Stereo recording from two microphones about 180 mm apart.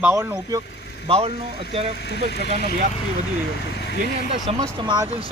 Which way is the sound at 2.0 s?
65° left (ahead or behind).